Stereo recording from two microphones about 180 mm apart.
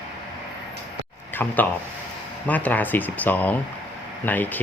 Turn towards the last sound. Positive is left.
turn(degrees=10)  # may be behind; listen again after turning